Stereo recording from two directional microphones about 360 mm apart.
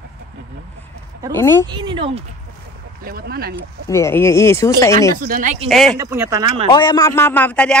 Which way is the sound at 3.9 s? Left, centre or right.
Centre.